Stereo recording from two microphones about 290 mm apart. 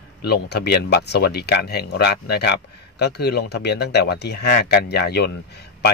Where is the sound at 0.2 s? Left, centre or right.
Left.